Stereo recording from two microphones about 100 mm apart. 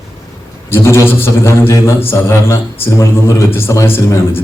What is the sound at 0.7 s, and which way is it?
A man's voice, 25° left (ahead or behind).